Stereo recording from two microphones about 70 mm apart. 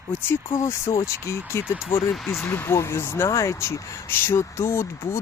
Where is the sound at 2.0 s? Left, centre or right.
Centre.